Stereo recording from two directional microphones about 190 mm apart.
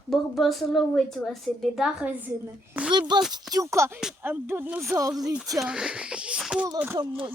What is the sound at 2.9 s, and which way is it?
Speech, 25° right (ahead or behind).